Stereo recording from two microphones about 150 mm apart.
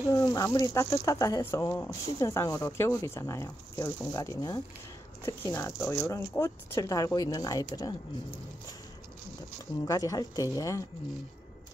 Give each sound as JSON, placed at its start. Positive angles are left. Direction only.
{"t": 0.3, "sound": "speech", "side_deg": 25}
{"t": 9.8, "sound": "speech", "side_deg": 25}